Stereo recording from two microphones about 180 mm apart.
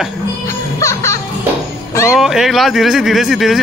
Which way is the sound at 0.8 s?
15° left (ahead or behind).